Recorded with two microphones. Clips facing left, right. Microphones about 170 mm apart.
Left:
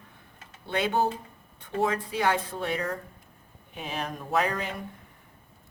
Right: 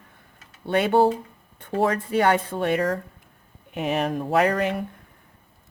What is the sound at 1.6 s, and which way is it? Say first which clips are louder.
Speech: right 5 dB; 60° right (ahead or behind).